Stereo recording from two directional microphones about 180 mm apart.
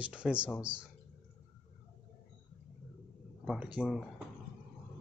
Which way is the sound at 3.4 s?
5° right (ahead or behind).